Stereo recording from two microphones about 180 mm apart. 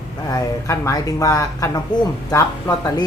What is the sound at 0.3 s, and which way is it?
Speech, 20° left (ahead or behind).